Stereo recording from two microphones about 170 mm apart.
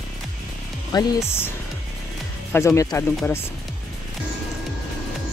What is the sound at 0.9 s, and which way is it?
Speech, 25° left (ahead or behind).